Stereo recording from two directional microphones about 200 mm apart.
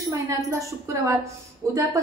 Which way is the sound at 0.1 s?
15° right (ahead or behind).